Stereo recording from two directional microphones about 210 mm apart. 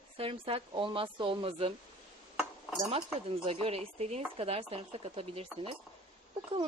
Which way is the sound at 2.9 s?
25° right (ahead or behind).